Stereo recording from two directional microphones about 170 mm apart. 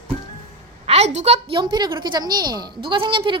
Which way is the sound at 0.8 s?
40° right (ahead or behind).